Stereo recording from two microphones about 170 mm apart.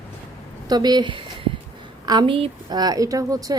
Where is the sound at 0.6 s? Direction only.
25° right (ahead or behind).